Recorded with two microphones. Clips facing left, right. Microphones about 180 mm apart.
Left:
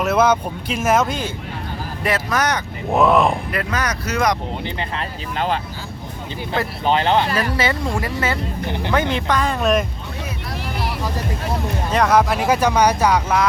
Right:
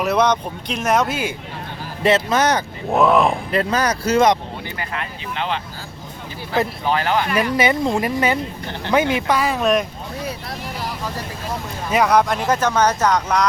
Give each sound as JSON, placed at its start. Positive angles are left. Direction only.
{"t": 0.0, "sound": "speech", "side_deg": 5}
{"t": 2.0, "sound": "speech", "side_deg": -25}
{"t": 2.9, "sound": "speech", "side_deg": 0}
{"t": 3.5, "sound": "speech", "side_deg": -30}
{"t": 4.6, "sound": "speech", "side_deg": 25}
{"t": 6.8, "sound": "speech", "side_deg": 25}
{"t": 7.5, "sound": "speech", "side_deg": -15}
{"t": 8.6, "sound": "speech", "side_deg": 15}
{"t": 8.9, "sound": "speech", "side_deg": -10}
{"t": 11.9, "sound": "speech", "side_deg": 0}